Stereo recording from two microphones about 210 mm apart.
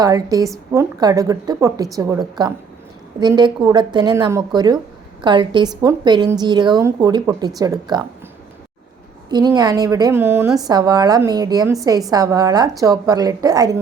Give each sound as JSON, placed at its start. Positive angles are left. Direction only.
{"t": 0.0, "sound": "a woman's voice", "side_deg": -15}
{"t": 9.3, "sound": "a woman's voice", "side_deg": -15}